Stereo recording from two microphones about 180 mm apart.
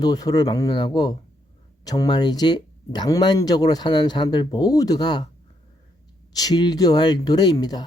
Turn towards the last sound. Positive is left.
turn(degrees=20)  # may be behind; listen again after turning